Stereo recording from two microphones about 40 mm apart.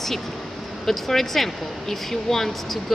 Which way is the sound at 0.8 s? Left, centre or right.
Centre.